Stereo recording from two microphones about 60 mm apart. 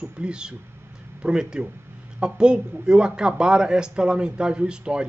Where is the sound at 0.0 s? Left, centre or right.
Centre.